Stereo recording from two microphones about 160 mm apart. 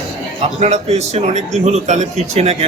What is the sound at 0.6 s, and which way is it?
Speech, 45° right (ahead or behind).